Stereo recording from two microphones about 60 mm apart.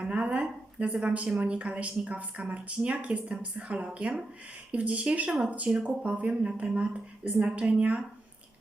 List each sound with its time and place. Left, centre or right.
0.0 s a woman's voice: centre